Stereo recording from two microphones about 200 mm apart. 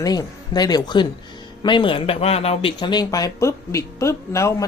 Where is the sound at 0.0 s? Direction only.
20° left (ahead or behind).